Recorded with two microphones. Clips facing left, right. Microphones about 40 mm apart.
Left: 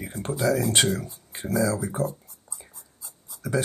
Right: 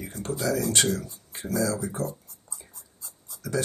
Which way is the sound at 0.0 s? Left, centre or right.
Left.